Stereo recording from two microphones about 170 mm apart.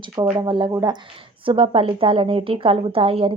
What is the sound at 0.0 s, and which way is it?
A woman's voice, 25° right (ahead or behind).